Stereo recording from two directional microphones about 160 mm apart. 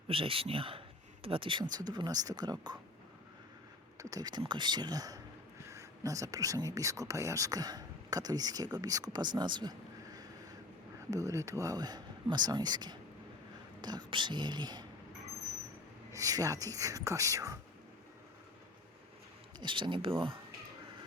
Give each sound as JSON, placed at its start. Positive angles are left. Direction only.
{"t": 0.1, "sound": "speech", "side_deg": -35}
{"t": 3.9, "sound": "speech", "side_deg": -20}
{"t": 16.1, "sound": "speech", "side_deg": -20}
{"t": 19.5, "sound": "speech", "side_deg": -30}